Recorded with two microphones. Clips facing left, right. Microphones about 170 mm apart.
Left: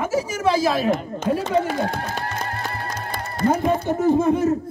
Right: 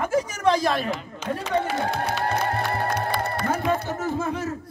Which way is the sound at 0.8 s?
50° left (ahead or behind).